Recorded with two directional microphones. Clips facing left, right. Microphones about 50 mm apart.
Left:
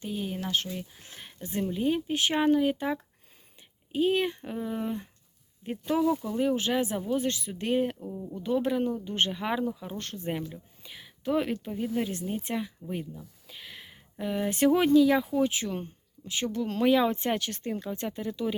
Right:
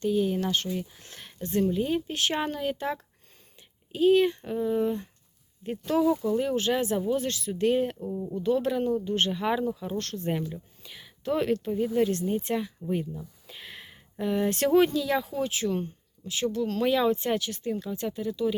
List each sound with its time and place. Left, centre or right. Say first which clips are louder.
0.0 s speech: right 8 dB; centre
7.2 s speech: right 3 dB; centre
7.9 s speech: right 5 dB; centre
8.4 s speech: right 1 dB; centre
9.3 s speech: right 3 dB; centre
12.9 s a sound: right 5 dB; centre
14.5 s speech: left 2 dB; centre
17.1 s speech: right 3 dB; left